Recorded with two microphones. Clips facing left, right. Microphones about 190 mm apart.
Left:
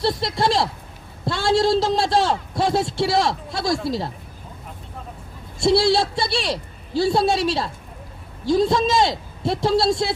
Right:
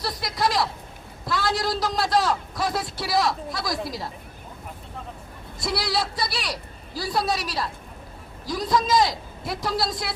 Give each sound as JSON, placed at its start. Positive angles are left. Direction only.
{"t": 0.0, "sound": "a man's voice", "side_deg": 25}
{"t": 5.5, "sound": "a man's voice", "side_deg": 25}